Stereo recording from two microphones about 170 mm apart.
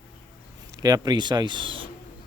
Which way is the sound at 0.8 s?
20° right (ahead or behind).